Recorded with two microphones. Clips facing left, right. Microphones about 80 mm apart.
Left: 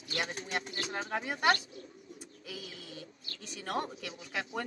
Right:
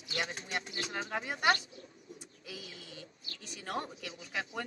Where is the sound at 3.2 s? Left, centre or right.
Left.